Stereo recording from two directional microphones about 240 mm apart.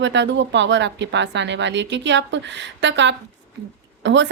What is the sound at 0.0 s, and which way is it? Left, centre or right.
A woman's voice, right.